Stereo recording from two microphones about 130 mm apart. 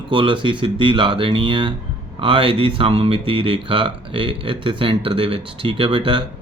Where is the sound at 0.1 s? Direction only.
40° right (ahead or behind).